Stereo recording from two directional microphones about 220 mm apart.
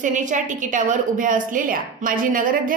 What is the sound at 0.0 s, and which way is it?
A woman's voice, 35° right (ahead or behind).